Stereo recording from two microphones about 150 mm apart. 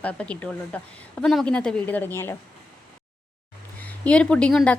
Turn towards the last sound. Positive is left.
turn(degrees=5)  # may be behind; listen again after turning